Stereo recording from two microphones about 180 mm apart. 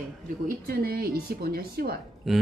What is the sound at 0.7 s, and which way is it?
A woman's voice, 60° right (ahead or behind).